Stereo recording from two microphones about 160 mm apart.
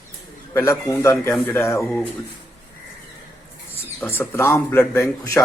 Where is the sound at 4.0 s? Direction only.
15° left (ahead or behind).